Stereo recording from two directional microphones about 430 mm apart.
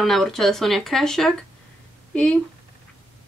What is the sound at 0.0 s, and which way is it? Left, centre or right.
Speech, centre.